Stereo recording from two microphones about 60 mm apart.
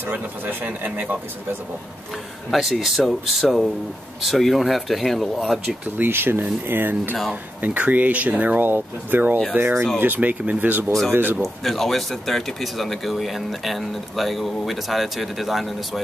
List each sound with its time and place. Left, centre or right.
0.1 s speech: right
2.5 s speech: centre
5.9 s speech: right
11.4 s speech: centre